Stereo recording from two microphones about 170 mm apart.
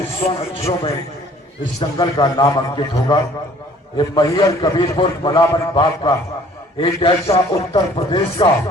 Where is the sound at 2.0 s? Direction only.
25° left (ahead or behind).